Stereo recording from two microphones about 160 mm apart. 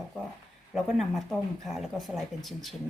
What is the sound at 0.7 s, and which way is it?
Speech, centre (ahead or behind).